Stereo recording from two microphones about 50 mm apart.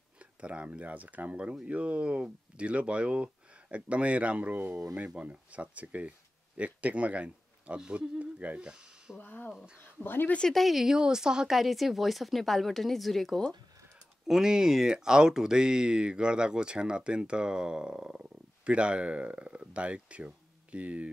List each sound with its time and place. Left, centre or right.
0.2 s speech: right
8.6 s speech: centre
9.2 s speech: left
10.5 s a woman's voice: centre
14.2 s speech: centre; by 21.1 s right